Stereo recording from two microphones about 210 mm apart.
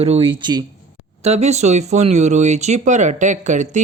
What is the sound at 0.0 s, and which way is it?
Speech, 25° right (ahead or behind).